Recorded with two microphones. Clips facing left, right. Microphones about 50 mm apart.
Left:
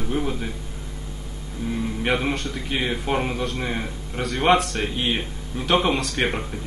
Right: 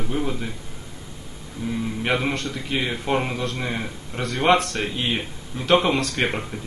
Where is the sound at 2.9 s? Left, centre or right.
Centre.